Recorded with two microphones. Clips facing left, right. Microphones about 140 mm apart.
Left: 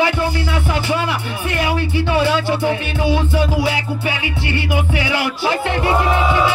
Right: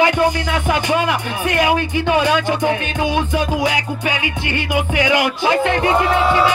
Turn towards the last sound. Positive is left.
turn(degrees=-15)  # may be behind; listen again after turning